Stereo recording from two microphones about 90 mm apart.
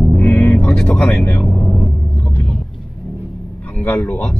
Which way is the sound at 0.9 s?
5° left (ahead or behind).